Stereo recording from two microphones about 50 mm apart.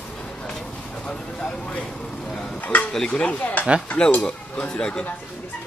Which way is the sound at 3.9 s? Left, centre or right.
Centre.